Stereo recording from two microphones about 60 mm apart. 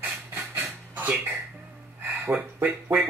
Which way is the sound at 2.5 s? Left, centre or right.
Right.